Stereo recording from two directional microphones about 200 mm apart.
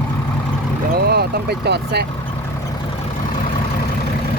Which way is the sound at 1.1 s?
55° right (ahead or behind).